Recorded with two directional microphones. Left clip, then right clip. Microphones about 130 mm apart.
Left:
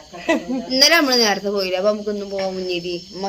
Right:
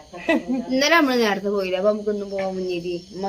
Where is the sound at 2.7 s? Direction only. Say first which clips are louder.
Left 2 dB; 20° right (ahead or behind).